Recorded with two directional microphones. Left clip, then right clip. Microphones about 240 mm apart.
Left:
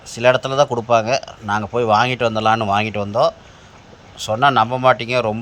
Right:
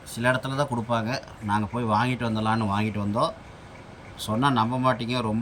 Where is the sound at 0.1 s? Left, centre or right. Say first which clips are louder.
Left 10 dB; centre.